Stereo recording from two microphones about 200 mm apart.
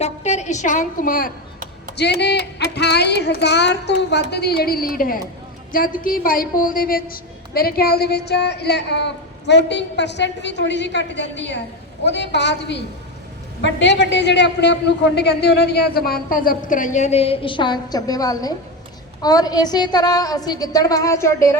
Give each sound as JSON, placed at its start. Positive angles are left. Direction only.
{"t": 0.0, "sound": "a woman's voice", "side_deg": 35}
{"t": 2.0, "sound": "a woman's voice", "side_deg": 55}